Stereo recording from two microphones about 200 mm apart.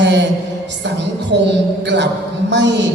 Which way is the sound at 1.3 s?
60° right (ahead or behind).